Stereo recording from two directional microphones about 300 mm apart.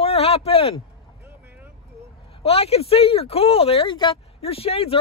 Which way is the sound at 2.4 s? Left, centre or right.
Centre.